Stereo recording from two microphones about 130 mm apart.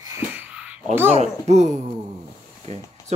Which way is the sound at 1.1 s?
60° right (ahead or behind).